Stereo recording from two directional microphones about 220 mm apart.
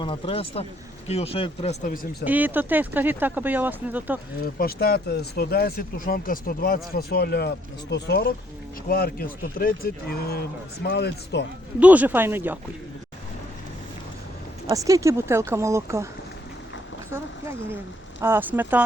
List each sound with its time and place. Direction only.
0.0 s speech: 25° left (ahead or behind)
2.2 s speech: 10° right (ahead or behind)
4.5 s speech: 45° left (ahead or behind)
11.8 s speech: 5° right (ahead or behind)
14.7 s speech: 15° right (ahead or behind)
17.1 s speech: 10° right (ahead or behind)